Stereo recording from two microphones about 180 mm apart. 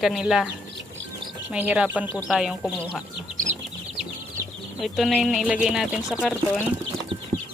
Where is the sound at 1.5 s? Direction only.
5° right (ahead or behind).